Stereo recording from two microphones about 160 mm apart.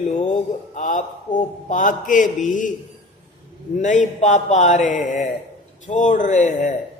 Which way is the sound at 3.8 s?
50° left (ahead or behind).